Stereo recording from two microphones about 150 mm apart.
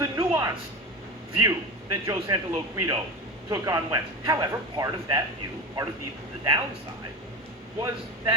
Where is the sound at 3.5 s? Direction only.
25° right (ahead or behind).